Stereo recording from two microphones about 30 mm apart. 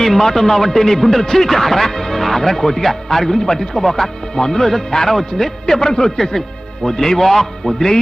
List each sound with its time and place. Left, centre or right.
0.0 s a man's voice: centre